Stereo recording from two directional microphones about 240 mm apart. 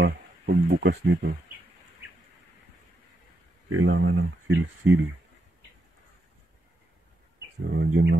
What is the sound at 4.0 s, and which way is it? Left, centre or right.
A man's voice, right.